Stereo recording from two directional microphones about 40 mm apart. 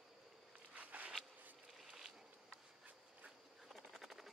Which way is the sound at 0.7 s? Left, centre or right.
Right.